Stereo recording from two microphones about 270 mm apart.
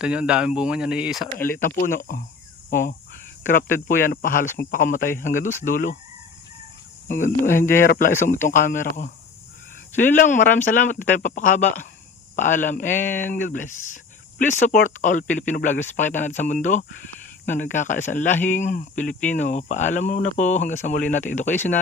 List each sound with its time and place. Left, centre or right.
0.0 s speech: centre
1.5 s speech: left
7.1 s speech: left